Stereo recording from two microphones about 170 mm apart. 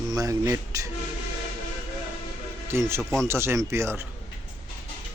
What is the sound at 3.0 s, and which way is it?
Speech, 5° left (ahead or behind).